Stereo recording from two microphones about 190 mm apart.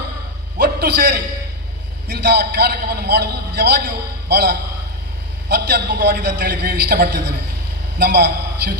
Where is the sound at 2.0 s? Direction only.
60° right (ahead or behind).